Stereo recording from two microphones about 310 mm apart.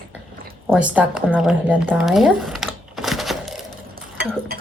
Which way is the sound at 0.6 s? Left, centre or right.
Centre.